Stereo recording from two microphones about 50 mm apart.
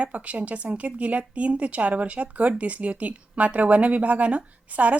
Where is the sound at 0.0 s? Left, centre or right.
Right.